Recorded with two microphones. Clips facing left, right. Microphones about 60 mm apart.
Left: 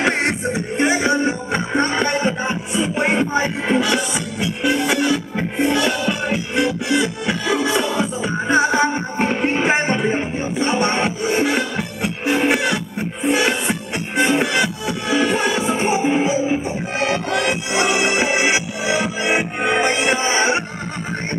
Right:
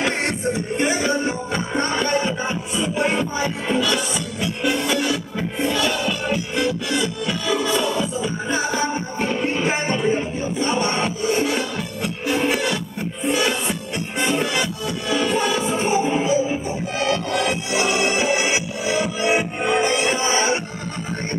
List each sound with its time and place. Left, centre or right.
0.0 s music: left